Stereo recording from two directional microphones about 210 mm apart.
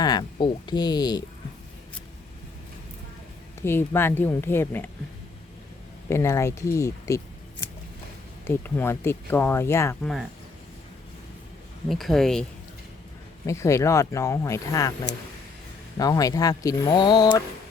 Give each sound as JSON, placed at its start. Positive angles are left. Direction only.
{"t": 0.0, "sound": "speech", "side_deg": 20}
{"t": 3.6, "sound": "speech", "side_deg": 10}
{"t": 6.1, "sound": "speech", "side_deg": 15}
{"t": 8.4, "sound": "speech", "side_deg": 10}
{"t": 11.9, "sound": "speech", "side_deg": 0}
{"t": 13.4, "sound": "speech", "side_deg": 15}